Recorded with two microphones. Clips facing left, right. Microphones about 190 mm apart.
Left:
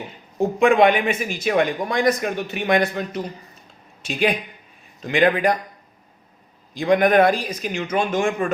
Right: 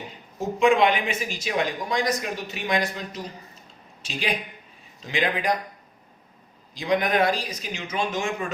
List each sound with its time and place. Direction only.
0.3 s speech: 55° left (ahead or behind)
6.7 s a man's voice: 55° left (ahead or behind)